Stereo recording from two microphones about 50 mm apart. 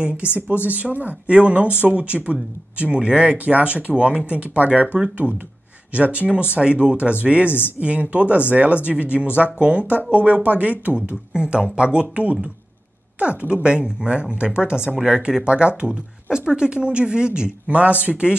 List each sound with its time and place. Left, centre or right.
0.2 s speech: left
0.7 s speech: right
11.3 s speech: centre
13.2 s speech: right